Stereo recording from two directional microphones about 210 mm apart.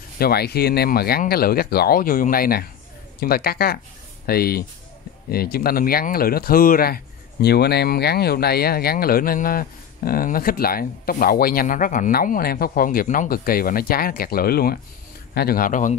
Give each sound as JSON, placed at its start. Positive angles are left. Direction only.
{"t": 0.2, "sound": "a man's voice", "side_deg": 50}